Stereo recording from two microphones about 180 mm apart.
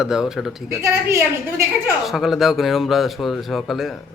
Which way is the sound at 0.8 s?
15° right (ahead or behind).